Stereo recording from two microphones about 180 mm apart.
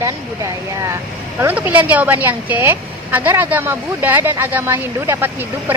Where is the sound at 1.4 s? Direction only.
10° right (ahead or behind).